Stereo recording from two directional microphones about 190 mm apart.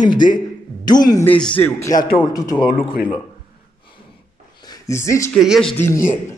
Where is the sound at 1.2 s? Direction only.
5° left (ahead or behind).